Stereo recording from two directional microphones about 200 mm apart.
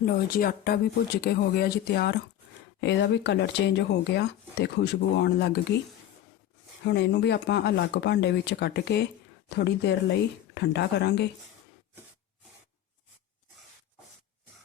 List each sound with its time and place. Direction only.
0.0 s speech: 45° left (ahead or behind)
6.8 s speech: 60° left (ahead or behind)